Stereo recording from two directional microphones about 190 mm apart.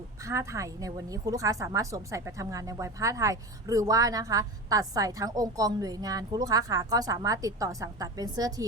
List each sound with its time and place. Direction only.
0.2 s a woman's voice: 15° right (ahead or behind)